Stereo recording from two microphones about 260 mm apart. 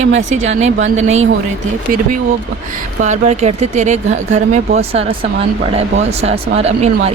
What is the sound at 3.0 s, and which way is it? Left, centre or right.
Speech, right.